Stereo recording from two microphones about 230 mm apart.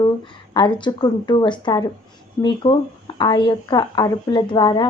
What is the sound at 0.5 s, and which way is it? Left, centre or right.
A woman's voice, centre.